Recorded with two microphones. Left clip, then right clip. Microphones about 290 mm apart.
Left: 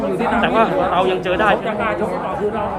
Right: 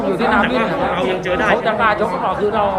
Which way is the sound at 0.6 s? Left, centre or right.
Centre.